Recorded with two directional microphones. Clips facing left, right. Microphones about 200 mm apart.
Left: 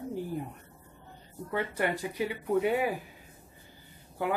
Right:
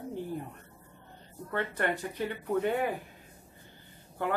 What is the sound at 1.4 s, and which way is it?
Speech, 10° left (ahead or behind).